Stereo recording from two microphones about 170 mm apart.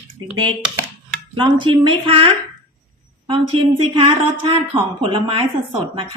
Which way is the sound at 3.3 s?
30° right (ahead or behind).